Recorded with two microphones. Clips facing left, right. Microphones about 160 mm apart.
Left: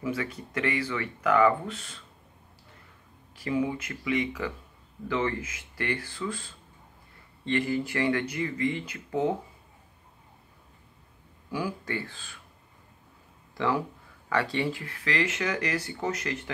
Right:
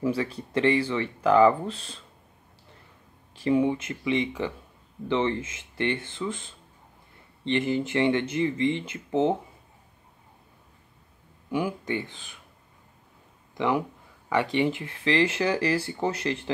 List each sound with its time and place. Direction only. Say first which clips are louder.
0.0 s speech: right 5 dB; 30° right (ahead or behind)
3.3 s speech: right 5 dB; 25° right (ahead or behind)
11.5 s speech: right 4 dB; 20° right (ahead or behind)
13.6 s speech: right 2 dB; 20° right (ahead or behind)